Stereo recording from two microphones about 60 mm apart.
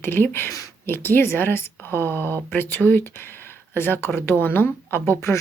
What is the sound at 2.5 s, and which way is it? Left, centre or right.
A woman's voice, left.